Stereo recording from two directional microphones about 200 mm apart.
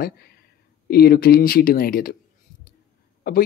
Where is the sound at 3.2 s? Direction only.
50° left (ahead or behind).